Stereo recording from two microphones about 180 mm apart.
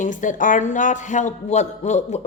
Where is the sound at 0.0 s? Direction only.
45° left (ahead or behind).